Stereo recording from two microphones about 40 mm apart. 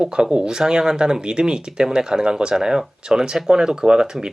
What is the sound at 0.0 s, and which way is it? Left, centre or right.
Speech, centre.